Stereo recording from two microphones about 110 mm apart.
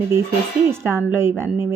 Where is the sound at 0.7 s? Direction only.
20° right (ahead or behind).